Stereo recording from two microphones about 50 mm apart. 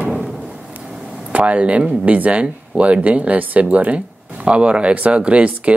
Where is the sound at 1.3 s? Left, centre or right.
Right.